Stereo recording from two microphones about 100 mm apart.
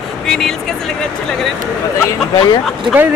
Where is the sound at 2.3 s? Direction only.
45° left (ahead or behind).